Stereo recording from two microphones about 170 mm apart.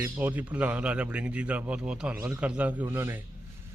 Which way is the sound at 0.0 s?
10° right (ahead or behind).